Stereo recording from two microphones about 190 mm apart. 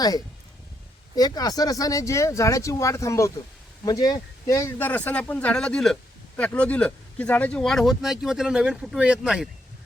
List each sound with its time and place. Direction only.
1.1 s speech: 20° left (ahead or behind); by 9.5 s centre (ahead or behind)